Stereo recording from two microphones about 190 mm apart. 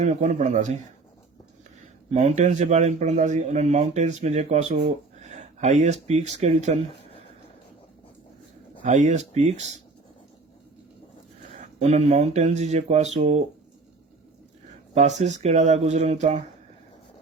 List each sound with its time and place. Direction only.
0.0 s speech: 40° right (ahead or behind)
2.1 s speech: 40° right (ahead or behind)
8.8 s speech: 40° right (ahead or behind)
11.8 s speech: 35° right (ahead or behind)
14.9 s speech: 40° right (ahead or behind)